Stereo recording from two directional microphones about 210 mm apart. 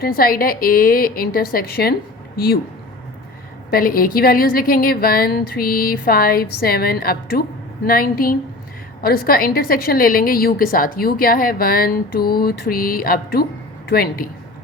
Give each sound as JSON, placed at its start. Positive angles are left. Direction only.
{"t": 0.0, "sound": "a woman's voice", "side_deg": 45}
{"t": 3.7, "sound": "a woman's voice", "side_deg": 45}